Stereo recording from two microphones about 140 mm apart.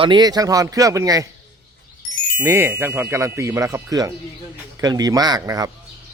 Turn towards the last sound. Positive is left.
turn(degrees=-25)  # may be behind; listen again after turning